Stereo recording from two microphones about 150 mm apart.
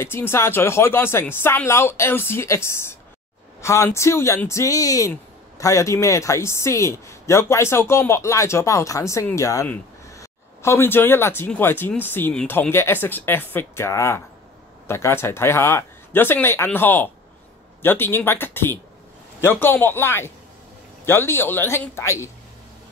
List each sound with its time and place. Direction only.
0.0 s speech: 15° left (ahead or behind)